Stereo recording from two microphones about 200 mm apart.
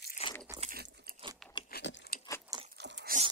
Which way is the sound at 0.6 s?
45° right (ahead or behind).